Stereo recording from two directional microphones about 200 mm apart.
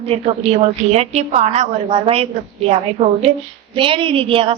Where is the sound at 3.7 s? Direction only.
25° right (ahead or behind).